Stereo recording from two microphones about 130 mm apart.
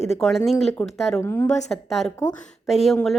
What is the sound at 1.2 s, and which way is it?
Speech, 20° left (ahead or behind).